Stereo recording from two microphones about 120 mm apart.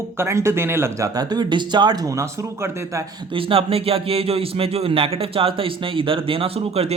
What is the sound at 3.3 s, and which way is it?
Speech, 50° right (ahead or behind).